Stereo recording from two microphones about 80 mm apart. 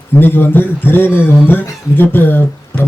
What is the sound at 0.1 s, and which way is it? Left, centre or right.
A man's voice, left.